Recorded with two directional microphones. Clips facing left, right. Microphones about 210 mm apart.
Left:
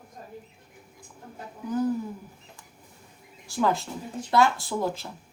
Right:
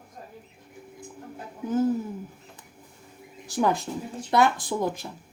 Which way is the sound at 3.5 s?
20° right (ahead or behind).